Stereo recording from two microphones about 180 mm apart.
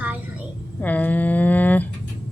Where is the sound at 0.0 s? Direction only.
10° right (ahead or behind).